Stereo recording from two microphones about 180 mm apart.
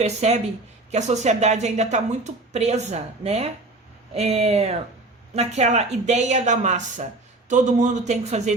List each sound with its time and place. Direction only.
0.0 s a woman's voice: 35° right (ahead or behind)